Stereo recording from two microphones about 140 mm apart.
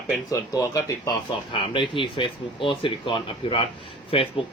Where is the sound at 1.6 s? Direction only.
35° left (ahead or behind).